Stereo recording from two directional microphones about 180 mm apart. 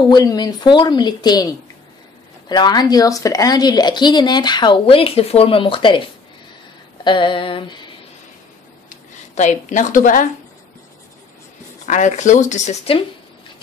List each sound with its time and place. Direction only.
0.1 s a woman's voice: 20° left (ahead or behind)
7.1 s a woman's voice: 25° left (ahead or behind)
8.8 s a sound: 40° left (ahead or behind)
11.8 s speech: 40° left (ahead or behind)